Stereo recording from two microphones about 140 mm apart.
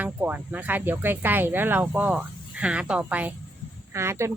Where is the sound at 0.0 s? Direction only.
10° right (ahead or behind).